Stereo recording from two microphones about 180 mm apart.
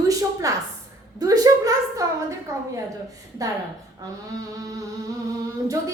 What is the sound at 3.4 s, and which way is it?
Speech, 20° right (ahead or behind).